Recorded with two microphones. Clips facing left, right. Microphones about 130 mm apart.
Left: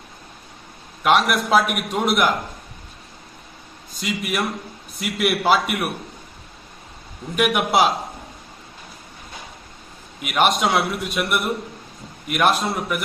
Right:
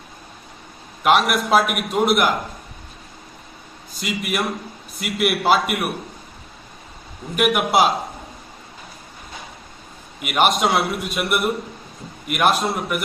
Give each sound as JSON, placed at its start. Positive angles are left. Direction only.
{"t": 1.0, "sound": "a man's voice", "side_deg": 0}
{"t": 4.0, "sound": "a man's voice", "side_deg": 0}
{"t": 7.3, "sound": "a man's voice", "side_deg": 0}
{"t": 10.3, "sound": "a man's voice", "side_deg": 0}